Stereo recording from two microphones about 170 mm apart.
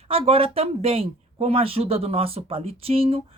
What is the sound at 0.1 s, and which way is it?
Speech, 35° right (ahead or behind).